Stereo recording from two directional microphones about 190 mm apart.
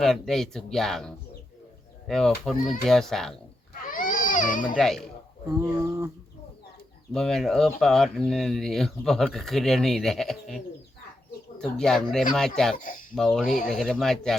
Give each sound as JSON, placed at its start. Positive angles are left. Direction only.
{"t": 0.0, "sound": "speech", "side_deg": 0}
{"t": 3.9, "sound": "a sound", "side_deg": 45}
{"t": 4.8, "sound": "speech", "side_deg": 0}
{"t": 5.5, "sound": "bird", "side_deg": -15}
{"t": 7.1, "sound": "speech", "side_deg": 5}
{"t": 12.7, "sound": "speech", "side_deg": 45}
{"t": 13.1, "sound": "speech", "side_deg": 5}